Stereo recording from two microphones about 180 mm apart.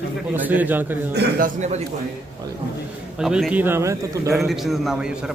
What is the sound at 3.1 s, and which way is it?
A man's voice, 5° right (ahead or behind).